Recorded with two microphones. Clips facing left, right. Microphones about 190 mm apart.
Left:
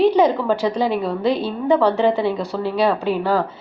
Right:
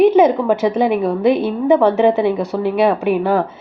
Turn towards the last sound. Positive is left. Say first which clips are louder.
# right 4 dB
turn(degrees=-20)  # may be behind; listen again after turning